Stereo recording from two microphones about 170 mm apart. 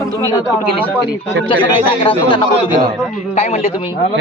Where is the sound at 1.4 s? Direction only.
30° left (ahead or behind).